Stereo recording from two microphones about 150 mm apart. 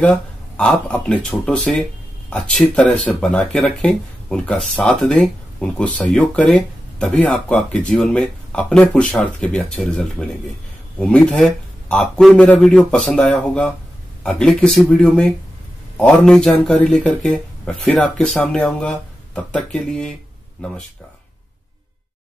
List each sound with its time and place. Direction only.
0.0 s speech: 5° left (ahead or behind)